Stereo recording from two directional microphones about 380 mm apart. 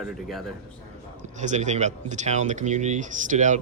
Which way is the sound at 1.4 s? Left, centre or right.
Centre.